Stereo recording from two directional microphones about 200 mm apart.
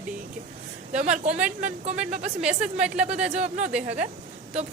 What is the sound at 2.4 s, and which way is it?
Speech, 5° right (ahead or behind).